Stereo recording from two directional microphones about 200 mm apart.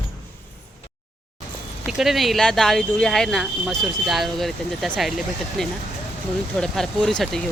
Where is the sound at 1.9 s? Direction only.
Centre (ahead or behind).